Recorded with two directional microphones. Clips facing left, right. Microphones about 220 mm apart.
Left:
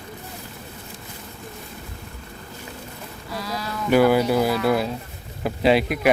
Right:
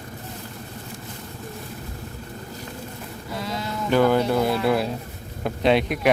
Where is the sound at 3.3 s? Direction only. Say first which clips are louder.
Even; 25° right (ahead or behind).